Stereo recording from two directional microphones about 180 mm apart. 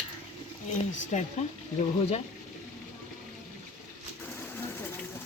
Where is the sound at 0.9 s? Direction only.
40° left (ahead or behind).